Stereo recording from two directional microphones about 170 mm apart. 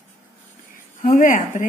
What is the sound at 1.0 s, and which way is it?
Speech, 50° left (ahead or behind).